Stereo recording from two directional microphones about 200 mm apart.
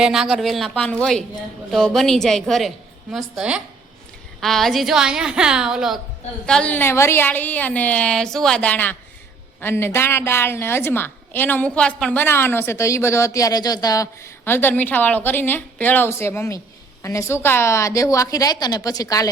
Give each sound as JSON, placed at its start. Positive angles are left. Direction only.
{"t": 0.0, "sound": "a woman's voice", "side_deg": -5}